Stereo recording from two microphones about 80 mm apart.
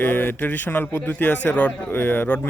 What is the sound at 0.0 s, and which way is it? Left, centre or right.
A man's voice, left.